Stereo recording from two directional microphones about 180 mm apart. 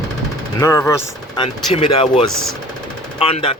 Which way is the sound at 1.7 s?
30° left (ahead or behind).